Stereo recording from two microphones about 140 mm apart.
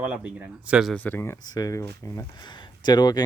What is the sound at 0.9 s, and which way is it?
Speech, 10° left (ahead or behind).